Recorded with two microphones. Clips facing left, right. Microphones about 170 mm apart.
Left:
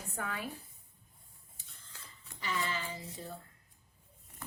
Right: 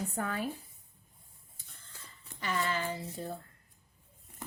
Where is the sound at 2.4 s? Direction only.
55° right (ahead or behind).